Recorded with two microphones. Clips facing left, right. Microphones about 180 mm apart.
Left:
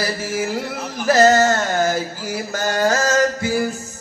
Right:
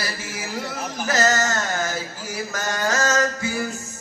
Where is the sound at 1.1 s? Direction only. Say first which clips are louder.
Left 8 dB; 30° left (ahead or behind).